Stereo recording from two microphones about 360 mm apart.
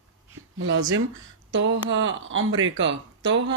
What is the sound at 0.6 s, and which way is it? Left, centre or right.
Speech, right.